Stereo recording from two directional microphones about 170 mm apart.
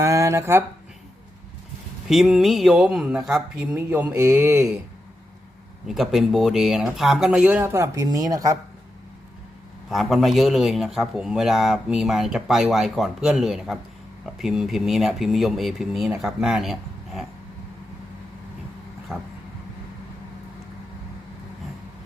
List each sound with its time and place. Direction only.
0.0 s speech: 20° right (ahead or behind)
2.0 s a man's voice: centre (ahead or behind)
5.9 s a man's voice: centre (ahead or behind); by 8.5 s 20° right (ahead or behind)
9.9 s a man's voice: centre (ahead or behind)
19.1 s a man's voice: centre (ahead or behind)